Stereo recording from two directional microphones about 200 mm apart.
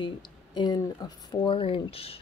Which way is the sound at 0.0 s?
20° left (ahead or behind).